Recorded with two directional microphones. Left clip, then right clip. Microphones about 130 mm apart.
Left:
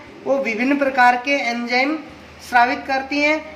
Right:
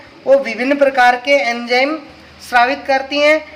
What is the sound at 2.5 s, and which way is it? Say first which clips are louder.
Speech: right 4 dB; 40° right (ahead or behind).